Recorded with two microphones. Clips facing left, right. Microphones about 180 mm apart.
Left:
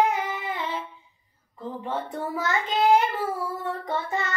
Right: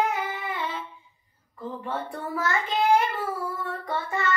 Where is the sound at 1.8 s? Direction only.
20° left (ahead or behind).